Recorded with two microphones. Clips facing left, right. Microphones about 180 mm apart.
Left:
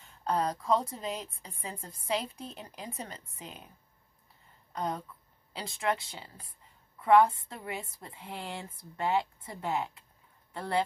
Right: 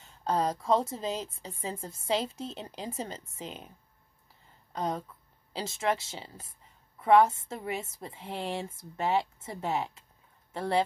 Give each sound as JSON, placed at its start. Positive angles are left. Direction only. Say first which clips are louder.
{"t": 0.0, "sound": "a woman's voice", "louder": "right 2 dB", "side_deg": -25}
{"t": 4.7, "sound": "a woman's voice", "louder": "right 2 dB", "side_deg": -25}